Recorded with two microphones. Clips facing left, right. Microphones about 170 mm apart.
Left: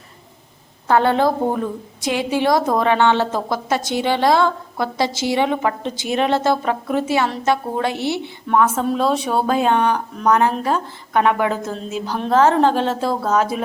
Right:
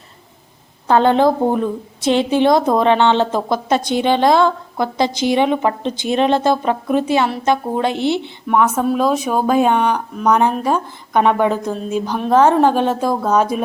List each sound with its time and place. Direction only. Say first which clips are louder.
0.9 s a woman's voice: right 3 dB; 20° right (ahead or behind)
8.4 s a woman's voice: right 2 dB; 10° right (ahead or behind)